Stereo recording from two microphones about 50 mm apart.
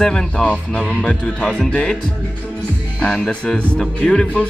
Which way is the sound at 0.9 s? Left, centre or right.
Left.